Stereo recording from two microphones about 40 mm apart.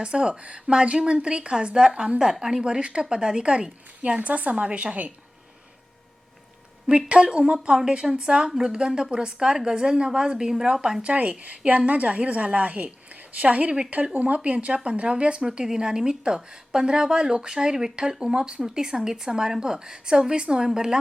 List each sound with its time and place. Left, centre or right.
0.0 s a woman's voice: right
4.2 s a woman's voice: right
6.8 s a woman's voice: right
7.8 s a woman's voice: centre
8.4 s a woman's voice: centre
11.0 s a woman's voice: right
15.4 s a woman's voice: centre